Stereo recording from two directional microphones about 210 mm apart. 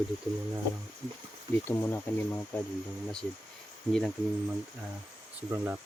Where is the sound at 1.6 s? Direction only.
10° left (ahead or behind).